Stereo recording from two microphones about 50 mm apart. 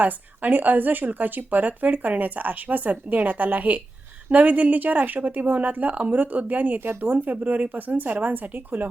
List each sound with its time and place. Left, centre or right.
0.0 s speech: right